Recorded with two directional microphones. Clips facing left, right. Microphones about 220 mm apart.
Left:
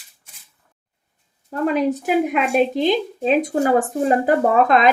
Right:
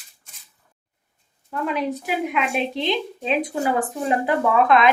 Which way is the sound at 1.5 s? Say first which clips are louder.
Left 6 dB; 45° left (ahead or behind).